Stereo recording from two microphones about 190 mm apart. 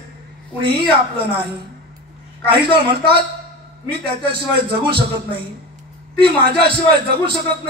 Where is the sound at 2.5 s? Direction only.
25° right (ahead or behind).